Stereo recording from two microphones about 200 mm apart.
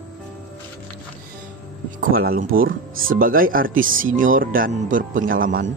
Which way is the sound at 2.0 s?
45° right (ahead or behind).